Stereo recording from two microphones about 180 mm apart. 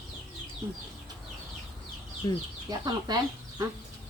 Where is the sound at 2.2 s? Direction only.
20° left (ahead or behind).